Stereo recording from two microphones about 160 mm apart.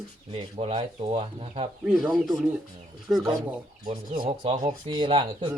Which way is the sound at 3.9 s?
30° right (ahead or behind).